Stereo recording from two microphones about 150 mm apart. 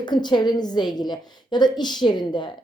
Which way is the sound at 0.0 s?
30° left (ahead or behind).